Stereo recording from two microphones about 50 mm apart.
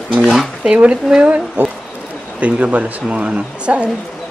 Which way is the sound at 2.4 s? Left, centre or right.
Right.